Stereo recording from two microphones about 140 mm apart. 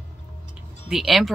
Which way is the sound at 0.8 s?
Centre (ahead or behind).